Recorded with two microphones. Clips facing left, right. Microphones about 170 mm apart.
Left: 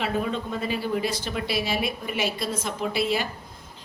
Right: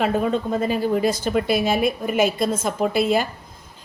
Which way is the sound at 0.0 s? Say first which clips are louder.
Right 6 dB; 45° right (ahead or behind).